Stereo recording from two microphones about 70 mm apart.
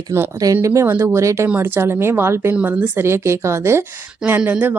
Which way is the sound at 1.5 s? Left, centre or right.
Right.